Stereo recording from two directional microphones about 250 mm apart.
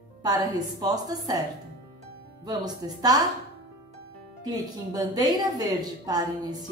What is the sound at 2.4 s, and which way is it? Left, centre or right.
Speech, centre.